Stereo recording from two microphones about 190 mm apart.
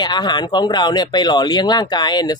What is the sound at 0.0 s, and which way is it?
Speech, 20° left (ahead or behind).